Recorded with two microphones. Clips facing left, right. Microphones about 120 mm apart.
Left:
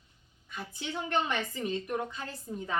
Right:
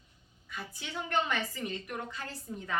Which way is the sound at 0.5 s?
20° left (ahead or behind).